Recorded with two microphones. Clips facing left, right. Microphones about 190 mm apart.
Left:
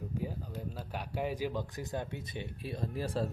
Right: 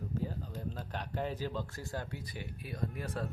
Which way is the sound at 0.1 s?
10° left (ahead or behind).